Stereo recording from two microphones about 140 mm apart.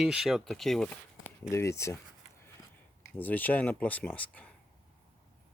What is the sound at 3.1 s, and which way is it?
Speech, 10° left (ahead or behind).